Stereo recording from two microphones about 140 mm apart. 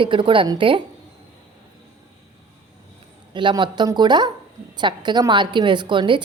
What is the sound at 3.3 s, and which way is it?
A woman's voice, 35° right (ahead or behind).